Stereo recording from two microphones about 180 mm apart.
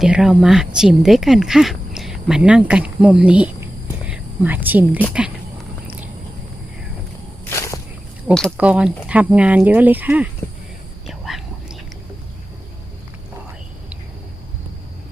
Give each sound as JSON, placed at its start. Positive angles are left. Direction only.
{"t": 0.0, "sound": "speech", "side_deg": -5}
{"t": 4.0, "sound": "whispering", "side_deg": -10}
{"t": 7.5, "sound": "walk", "side_deg": 15}
{"t": 8.4, "sound": "speech", "side_deg": -5}
{"t": 11.0, "sound": "whispering", "side_deg": 0}